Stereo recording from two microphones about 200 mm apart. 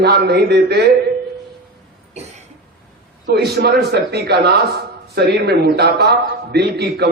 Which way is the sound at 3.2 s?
55° right (ahead or behind).